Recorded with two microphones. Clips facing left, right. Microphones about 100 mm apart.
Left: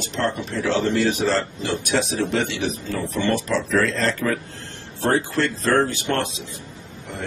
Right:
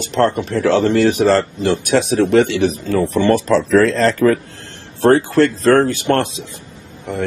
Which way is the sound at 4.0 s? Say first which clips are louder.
Right 9 dB; 50° right (ahead or behind).